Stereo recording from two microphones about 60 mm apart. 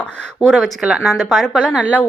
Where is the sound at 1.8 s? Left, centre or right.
Left.